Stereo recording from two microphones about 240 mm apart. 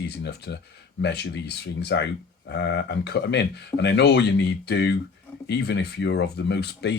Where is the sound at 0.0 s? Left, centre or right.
Left.